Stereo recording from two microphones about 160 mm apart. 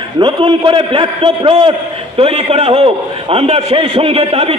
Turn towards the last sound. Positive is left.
turn(degrees=-35)  # may be behind; listen again after turning